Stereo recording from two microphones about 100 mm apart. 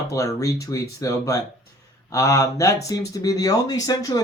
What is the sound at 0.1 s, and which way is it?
Speech, 35° left (ahead or behind).